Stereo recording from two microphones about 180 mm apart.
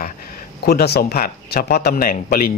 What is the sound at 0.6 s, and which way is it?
Speech, 60° left (ahead or behind).